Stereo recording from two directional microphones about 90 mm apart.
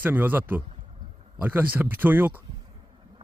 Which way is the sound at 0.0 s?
20° right (ahead or behind).